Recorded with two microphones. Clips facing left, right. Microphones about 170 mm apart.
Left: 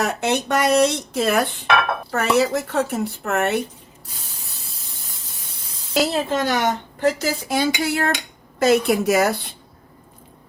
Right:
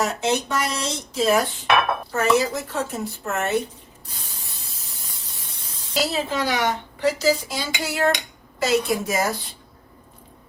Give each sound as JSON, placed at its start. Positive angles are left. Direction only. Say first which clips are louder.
{"t": 0.0, "sound": "speech", "louder": "left 1 dB", "side_deg": 60}
{"t": 5.9, "sound": "a woman's voice", "louder": "left 4 dB", "side_deg": 50}